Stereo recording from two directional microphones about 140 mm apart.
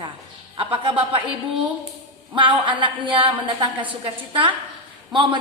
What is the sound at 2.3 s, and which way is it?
A woman's voice, 35° right (ahead or behind).